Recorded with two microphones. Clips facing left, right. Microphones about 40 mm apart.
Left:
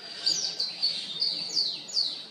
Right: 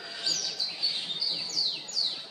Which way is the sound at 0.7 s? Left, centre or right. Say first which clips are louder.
Even; right.